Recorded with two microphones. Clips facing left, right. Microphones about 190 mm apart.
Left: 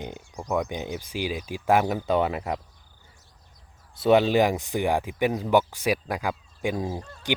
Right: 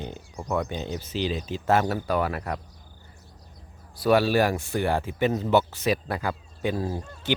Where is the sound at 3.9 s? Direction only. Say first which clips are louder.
Left 2 dB; 20° left (ahead or behind).